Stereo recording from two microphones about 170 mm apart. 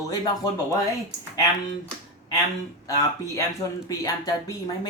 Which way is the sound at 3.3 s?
20° left (ahead or behind).